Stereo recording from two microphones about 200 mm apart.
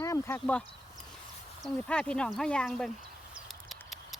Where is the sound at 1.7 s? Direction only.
5° left (ahead or behind).